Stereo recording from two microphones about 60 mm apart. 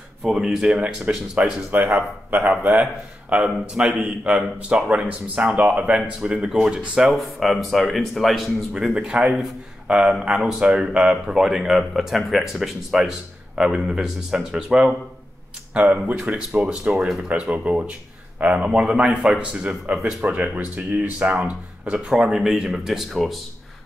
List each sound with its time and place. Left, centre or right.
0.2 s a man's voice: centre
2.0 s speech: right
3.4 s a man's voice: centre
7.2 s a man's voice: centre
8.7 s a man's voice: centre